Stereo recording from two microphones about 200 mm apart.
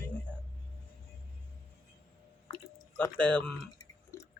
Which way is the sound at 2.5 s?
20° left (ahead or behind).